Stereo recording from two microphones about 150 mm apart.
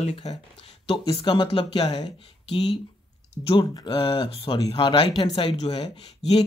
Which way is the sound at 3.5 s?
35° left (ahead or behind).